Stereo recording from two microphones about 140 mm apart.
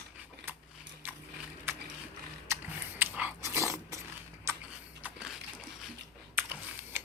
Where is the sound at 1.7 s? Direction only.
15° right (ahead or behind).